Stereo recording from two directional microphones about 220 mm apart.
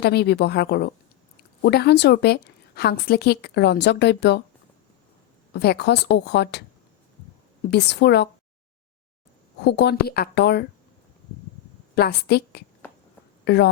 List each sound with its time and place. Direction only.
0.0 s a woman's voice: 50° left (ahead or behind)
5.5 s a woman's voice: 50° left (ahead or behind)
7.7 s a woman's voice: 50° left (ahead or behind)
9.6 s a woman's voice: 50° left (ahead or behind)
11.9 s a woman's voice: 45° left (ahead or behind)